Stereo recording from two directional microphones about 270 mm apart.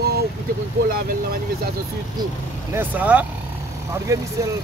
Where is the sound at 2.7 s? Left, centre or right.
Centre.